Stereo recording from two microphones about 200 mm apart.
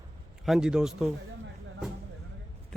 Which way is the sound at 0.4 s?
5° right (ahead or behind).